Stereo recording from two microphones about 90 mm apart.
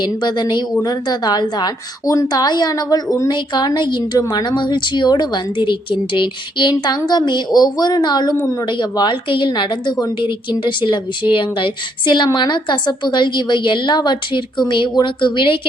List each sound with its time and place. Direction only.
0.0 s a woman's voice: 55° left (ahead or behind)